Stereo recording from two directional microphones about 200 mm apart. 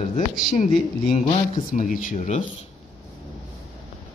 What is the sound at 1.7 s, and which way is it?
Speech, 45° left (ahead or behind).